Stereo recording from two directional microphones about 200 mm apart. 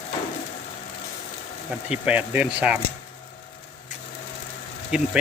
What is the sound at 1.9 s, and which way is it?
Speech, 5° right (ahead or behind).